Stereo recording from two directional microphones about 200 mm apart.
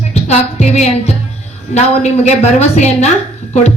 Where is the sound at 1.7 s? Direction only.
35° left (ahead or behind).